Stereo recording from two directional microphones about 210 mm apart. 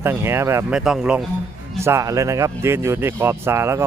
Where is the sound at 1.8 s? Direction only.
15° right (ahead or behind).